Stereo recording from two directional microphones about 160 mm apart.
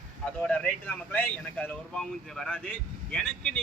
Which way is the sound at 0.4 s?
5° left (ahead or behind).